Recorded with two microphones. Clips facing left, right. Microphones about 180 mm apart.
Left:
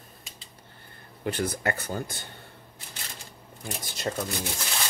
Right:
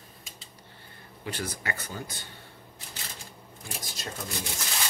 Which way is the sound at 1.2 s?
50° left (ahead or behind).